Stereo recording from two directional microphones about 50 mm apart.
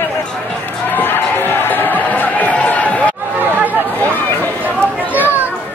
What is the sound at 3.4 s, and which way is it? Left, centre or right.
Chatter, right.